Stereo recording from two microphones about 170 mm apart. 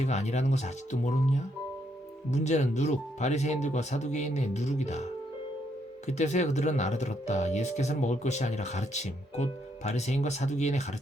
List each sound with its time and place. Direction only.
0.0 s speech: 40° left (ahead or behind)
6.1 s speech: 45° left (ahead or behind)